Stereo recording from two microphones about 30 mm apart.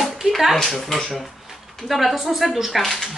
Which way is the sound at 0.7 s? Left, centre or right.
Centre.